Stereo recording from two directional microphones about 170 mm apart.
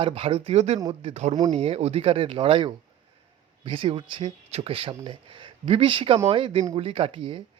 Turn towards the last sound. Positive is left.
turn(degrees=-30)  # may be behind; listen again after turning